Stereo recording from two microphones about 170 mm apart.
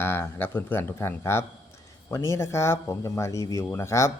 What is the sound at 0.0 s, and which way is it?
Speech, 15° left (ahead or behind).